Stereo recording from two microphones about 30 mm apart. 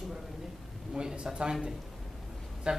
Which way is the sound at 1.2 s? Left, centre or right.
Right.